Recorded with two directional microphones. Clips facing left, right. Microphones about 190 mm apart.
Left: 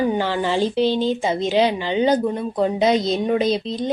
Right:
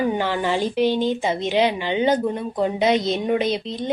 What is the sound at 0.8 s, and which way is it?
A woman's voice, 15° right (ahead or behind).